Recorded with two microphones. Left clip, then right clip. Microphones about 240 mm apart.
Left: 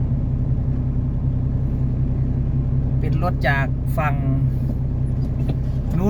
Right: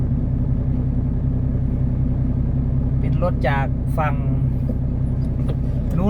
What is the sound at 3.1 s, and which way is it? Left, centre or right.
Speech, left.